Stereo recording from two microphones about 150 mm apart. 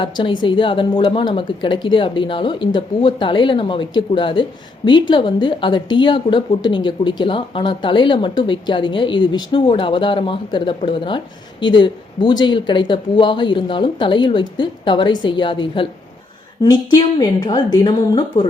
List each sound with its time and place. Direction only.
0.0 s a woman's voice: 35° left (ahead or behind)